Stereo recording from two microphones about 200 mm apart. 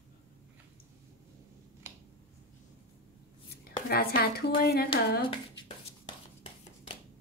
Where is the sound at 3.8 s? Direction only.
50° left (ahead or behind).